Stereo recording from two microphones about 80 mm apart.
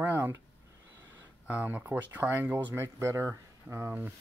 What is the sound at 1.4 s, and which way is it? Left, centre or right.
Speech, centre.